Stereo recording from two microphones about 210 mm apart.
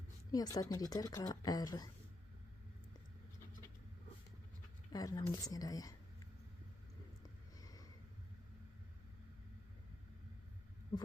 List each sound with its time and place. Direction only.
0.3 s speech: 15° left (ahead or behind)
4.9 s speech: 15° left (ahead or behind)
7.2 s a sound: 15° left (ahead or behind)